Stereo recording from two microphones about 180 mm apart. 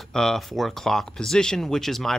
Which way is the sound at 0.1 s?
5° left (ahead or behind).